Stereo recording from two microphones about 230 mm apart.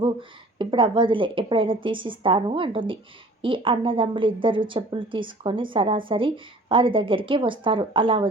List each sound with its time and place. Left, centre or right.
0.0 s a woman's voice: right